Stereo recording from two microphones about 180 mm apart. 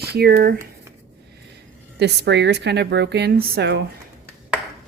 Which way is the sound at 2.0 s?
70° right (ahead or behind).